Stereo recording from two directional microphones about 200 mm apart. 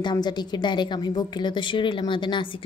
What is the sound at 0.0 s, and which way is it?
A woman's voice, 20° left (ahead or behind).